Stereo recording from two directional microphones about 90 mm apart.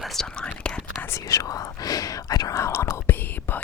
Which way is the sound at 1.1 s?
40° left (ahead or behind).